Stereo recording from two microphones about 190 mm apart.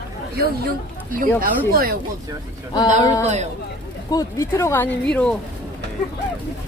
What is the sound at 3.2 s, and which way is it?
Speech, 35° right (ahead or behind).